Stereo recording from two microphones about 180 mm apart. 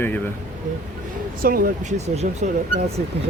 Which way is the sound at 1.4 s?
50° right (ahead or behind).